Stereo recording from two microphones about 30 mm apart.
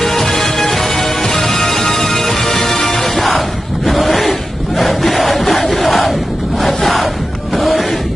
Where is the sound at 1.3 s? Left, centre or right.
Left.